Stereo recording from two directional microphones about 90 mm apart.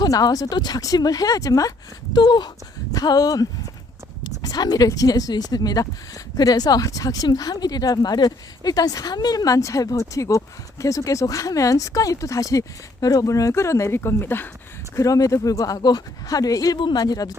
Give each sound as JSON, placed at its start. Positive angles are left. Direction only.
{"t": 0.0, "sound": "speech", "side_deg": 45}
{"t": 2.1, "sound": "speech", "side_deg": 55}
{"t": 4.2, "sound": "a sound", "side_deg": 45}
{"t": 4.9, "sound": "speech", "side_deg": 40}
{"t": 14.9, "sound": "speech", "side_deg": 40}